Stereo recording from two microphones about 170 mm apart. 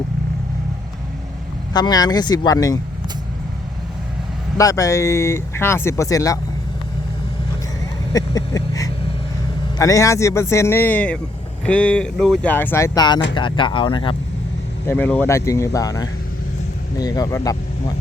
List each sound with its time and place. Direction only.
1.7 s speech: 25° left (ahead or behind)
4.5 s speech: 20° left (ahead or behind)
8.1 s a sound: 20° left (ahead or behind)
9.7 s speech: 20° left (ahead or behind)
14.8 s speech: 10° left (ahead or behind)